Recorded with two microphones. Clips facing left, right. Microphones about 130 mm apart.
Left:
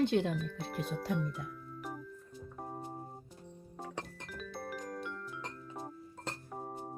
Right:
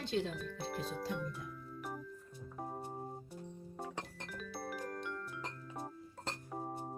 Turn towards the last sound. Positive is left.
turn(degrees=0)  # may be behind; listen again after turning